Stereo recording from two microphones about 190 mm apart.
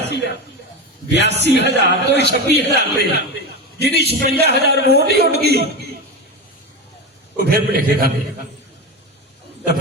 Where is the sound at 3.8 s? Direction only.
60° right (ahead or behind).